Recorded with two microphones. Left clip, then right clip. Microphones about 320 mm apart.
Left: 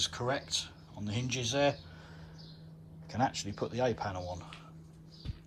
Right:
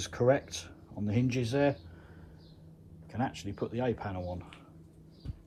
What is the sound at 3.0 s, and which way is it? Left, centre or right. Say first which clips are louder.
Speech: left 3 dB; centre.